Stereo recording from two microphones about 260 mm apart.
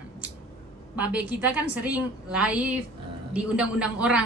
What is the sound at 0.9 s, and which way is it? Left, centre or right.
A woman's voice, centre.